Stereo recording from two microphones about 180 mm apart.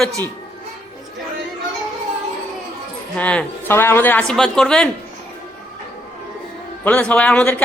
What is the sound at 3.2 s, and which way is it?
Speech, 10° left (ahead or behind).